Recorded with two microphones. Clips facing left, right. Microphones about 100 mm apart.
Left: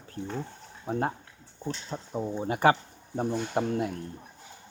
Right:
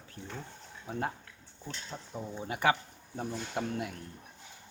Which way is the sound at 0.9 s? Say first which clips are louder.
Left 6 dB; 40° left (ahead or behind).